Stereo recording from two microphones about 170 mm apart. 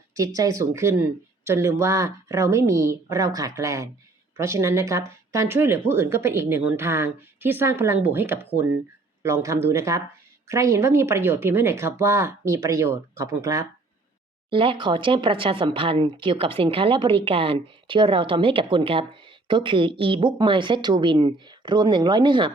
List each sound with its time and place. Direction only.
0.1 s a woman's voice: 20° right (ahead or behind)
14.5 s a woman's voice: 30° right (ahead or behind)